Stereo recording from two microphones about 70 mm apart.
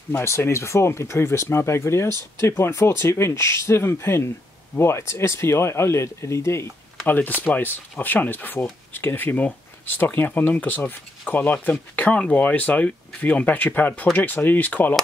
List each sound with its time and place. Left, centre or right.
0.2 s speech: left
7.1 s speech: left